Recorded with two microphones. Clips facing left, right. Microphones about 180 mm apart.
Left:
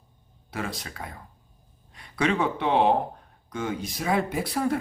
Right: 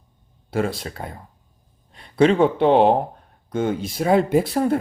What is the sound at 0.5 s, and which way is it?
Speech, 30° right (ahead or behind).